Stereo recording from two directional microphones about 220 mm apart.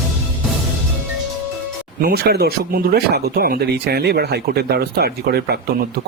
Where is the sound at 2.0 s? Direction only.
45° right (ahead or behind).